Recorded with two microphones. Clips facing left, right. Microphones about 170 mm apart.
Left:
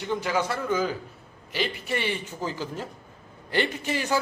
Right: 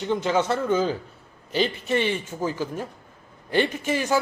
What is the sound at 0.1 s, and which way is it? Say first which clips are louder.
A man's voice: right 4 dB; 25° right (ahead or behind).